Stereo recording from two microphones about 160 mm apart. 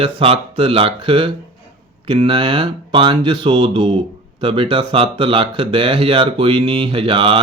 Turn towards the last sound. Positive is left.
turn(degrees=-35)  # may be behind; listen again after turning